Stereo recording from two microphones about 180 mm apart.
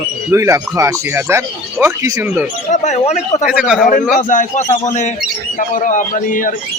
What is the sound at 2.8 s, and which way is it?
Speech, 40° left (ahead or behind).